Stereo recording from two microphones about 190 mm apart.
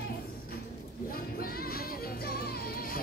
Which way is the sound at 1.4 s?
50° left (ahead or behind).